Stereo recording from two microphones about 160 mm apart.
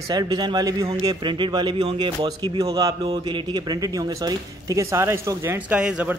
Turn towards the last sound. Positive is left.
turn(degrees=-5)  # may be behind; listen again after turning